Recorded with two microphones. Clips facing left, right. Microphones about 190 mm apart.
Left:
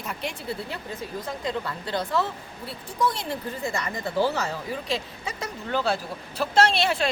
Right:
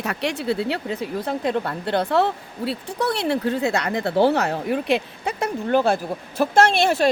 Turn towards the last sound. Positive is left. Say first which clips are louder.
# right 5 dB
turn(degrees=-45)  # may be behind; listen again after turning